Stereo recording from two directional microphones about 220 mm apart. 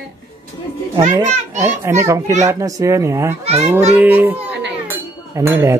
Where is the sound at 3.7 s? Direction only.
10° right (ahead or behind).